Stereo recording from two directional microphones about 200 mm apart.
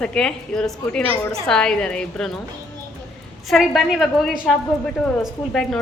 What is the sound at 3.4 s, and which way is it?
A woman's voice, centre (ahead or behind).